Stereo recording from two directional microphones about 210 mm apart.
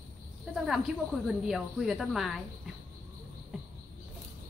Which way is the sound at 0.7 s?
Centre (ahead or behind).